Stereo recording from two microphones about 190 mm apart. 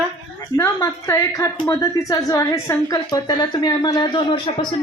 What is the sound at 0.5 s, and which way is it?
A woman's voice, 15° left (ahead or behind).